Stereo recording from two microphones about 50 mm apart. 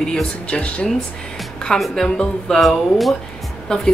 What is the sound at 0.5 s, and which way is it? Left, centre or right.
Speech, left.